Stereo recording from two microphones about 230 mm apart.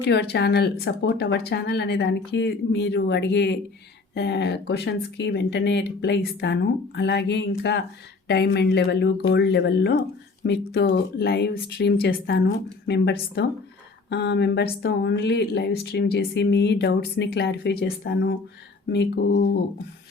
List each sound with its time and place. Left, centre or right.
0.1 s speech: left